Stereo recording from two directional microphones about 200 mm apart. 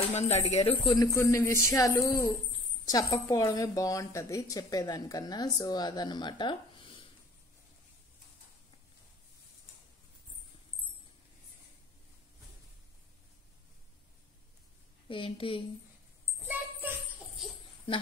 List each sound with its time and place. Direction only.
0.1 s speech: 35° left (ahead or behind)
0.9 s a woman's voice: 15° left (ahead or behind)
15.0 s a woman's voice: 25° left (ahead or behind)
16.3 s a sound: 10° right (ahead or behind)